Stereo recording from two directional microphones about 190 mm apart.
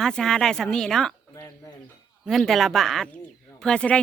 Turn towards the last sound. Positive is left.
turn(degrees=5)  # may be behind; listen again after turning